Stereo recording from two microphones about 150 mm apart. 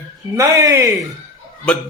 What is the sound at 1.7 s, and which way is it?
Speech, 5° left (ahead or behind).